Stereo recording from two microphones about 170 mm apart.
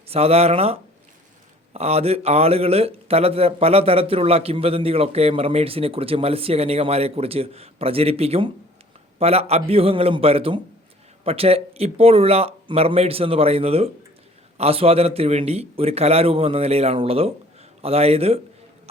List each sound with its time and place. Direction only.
0.1 s a man's voice: 35° right (ahead or behind)